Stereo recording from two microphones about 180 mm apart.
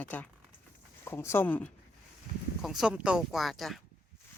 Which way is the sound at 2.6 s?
Centre (ahead or behind).